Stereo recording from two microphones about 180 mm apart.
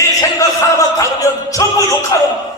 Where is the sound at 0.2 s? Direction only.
15° left (ahead or behind).